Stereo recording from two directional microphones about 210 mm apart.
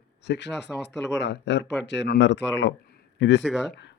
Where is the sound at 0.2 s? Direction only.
55° left (ahead or behind).